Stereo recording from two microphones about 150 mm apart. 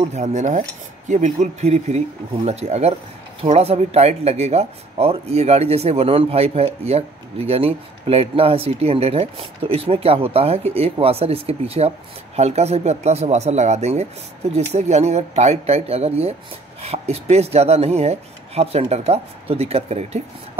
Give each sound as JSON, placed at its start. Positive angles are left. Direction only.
{"t": 0.1, "sound": "speech", "side_deg": -55}